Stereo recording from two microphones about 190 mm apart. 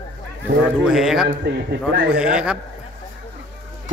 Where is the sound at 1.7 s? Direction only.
60° right (ahead or behind).